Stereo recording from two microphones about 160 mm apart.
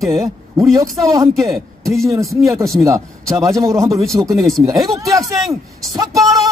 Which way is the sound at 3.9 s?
Centre (ahead or behind).